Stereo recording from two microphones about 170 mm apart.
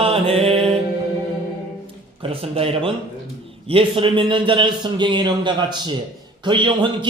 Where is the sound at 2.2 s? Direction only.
35° right (ahead or behind).